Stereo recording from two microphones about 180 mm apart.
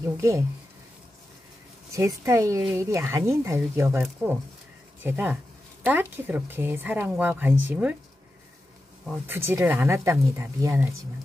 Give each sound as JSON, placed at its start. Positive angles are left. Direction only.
{"t": 0.0, "sound": "speech", "side_deg": -15}
{"t": 1.9, "sound": "speech", "side_deg": -15}
{"t": 9.0, "sound": "speech", "side_deg": -10}